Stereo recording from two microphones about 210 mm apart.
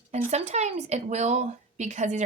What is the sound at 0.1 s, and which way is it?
Speech, 30° right (ahead or behind).